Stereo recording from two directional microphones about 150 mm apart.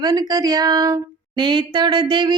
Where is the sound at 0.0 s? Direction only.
25° right (ahead or behind).